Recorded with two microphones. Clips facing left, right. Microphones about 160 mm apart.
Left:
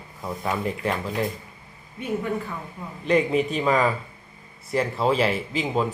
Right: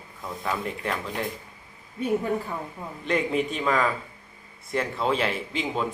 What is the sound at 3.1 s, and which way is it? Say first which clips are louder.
Speech: left 4 dB; centre (ahead or behind).